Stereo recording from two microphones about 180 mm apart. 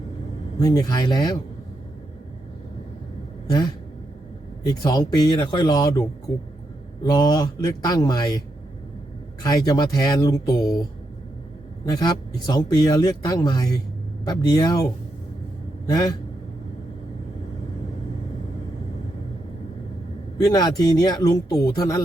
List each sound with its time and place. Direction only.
0.6 s speech: 20° left (ahead or behind)
4.7 s speech: 20° left (ahead or behind)
11.9 s speech: 20° left (ahead or behind)
15.9 s speech: 20° left (ahead or behind)
20.4 s speech: 20° left (ahead or behind)